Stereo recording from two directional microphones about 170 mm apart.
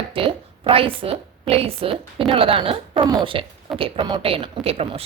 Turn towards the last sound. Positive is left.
turn(degrees=-35)  # may be behind; listen again after turning